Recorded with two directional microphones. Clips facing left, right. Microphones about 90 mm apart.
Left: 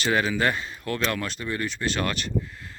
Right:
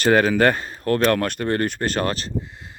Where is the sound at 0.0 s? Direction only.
45° right (ahead or behind).